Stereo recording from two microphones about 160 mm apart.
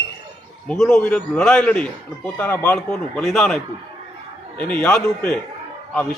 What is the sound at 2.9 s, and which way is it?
A man's voice, centre (ahead or behind).